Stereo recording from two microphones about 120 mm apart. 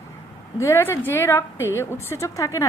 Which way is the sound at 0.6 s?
20° left (ahead or behind).